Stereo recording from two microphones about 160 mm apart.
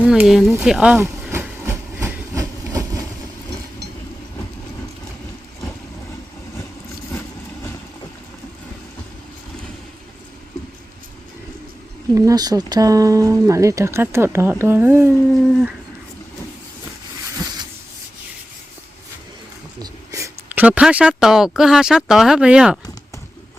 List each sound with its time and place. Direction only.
0.0 s a sound: 5° right (ahead or behind)
0.6 s speech: 5° right (ahead or behind)
0.9 s train: 15° right (ahead or behind)
12.1 s speech: 20° right (ahead or behind)
15.3 s speech: centre (ahead or behind)
19.8 s a sound: 20° right (ahead or behind)
20.7 s speech: 10° right (ahead or behind)